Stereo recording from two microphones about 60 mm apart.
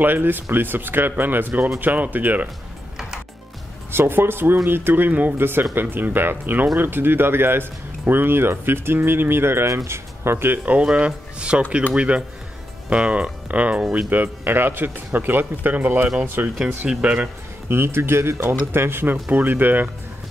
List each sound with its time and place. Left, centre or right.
0.0 s speech: right
3.9 s speech: right
10.6 s speech: right
17.0 s speech: centre
17.6 s speech: right